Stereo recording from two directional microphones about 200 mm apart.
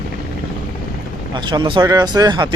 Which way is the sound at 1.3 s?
25° right (ahead or behind).